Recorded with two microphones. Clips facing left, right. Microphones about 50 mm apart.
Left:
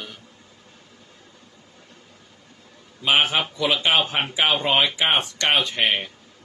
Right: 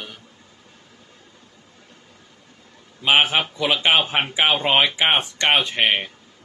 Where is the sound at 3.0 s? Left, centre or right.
Centre.